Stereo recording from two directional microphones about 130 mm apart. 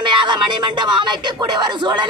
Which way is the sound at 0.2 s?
35° right (ahead or behind).